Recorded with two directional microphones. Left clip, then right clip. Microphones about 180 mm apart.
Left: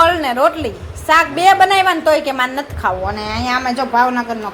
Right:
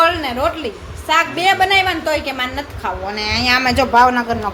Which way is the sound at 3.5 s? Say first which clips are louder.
Right 2 dB; 15° right (ahead or behind).